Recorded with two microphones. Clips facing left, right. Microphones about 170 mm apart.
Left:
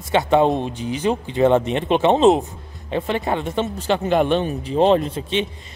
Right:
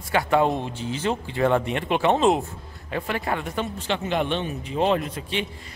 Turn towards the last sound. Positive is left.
turn(degrees=25)  # may be behind; listen again after turning